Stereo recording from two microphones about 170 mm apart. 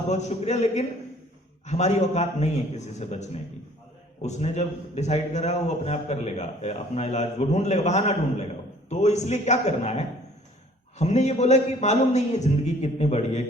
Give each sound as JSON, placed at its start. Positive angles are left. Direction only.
{"t": 0.1, "sound": "a man's voice", "side_deg": 40}